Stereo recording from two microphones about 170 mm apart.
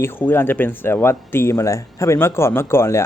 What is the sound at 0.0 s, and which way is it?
Speech, 10° left (ahead or behind).